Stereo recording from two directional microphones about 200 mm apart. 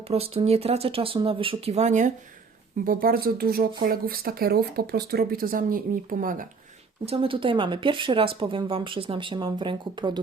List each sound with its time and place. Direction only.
0.1 s speech: 30° right (ahead or behind)
7.0 s speech: 30° right (ahead or behind)